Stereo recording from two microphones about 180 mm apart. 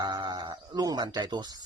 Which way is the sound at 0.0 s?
20° right (ahead or behind).